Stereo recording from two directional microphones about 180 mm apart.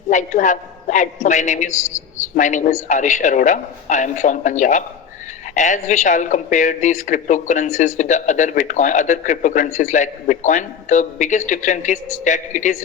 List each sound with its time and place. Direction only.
0.1 s speech: 45° left (ahead or behind)